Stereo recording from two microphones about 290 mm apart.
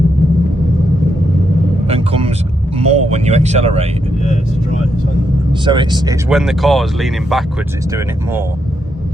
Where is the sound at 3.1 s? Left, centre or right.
Right.